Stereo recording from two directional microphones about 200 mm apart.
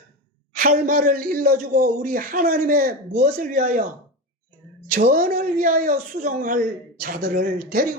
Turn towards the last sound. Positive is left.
turn(degrees=-50)  # may be behind; listen again after turning